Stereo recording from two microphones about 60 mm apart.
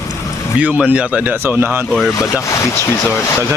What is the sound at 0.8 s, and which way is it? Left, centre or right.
Speech, right.